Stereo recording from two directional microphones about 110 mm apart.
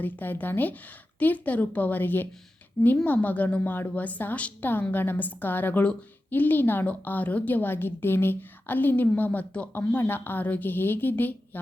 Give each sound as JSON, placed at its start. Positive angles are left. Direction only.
{"t": 0.0, "sound": "a woman's voice", "side_deg": 15}